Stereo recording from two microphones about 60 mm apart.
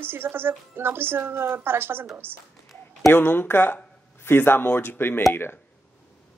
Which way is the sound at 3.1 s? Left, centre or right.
Left.